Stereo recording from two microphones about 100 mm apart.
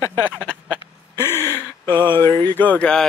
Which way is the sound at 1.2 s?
25° left (ahead or behind).